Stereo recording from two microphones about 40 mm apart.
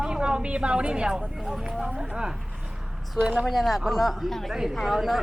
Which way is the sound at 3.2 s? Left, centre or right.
Right.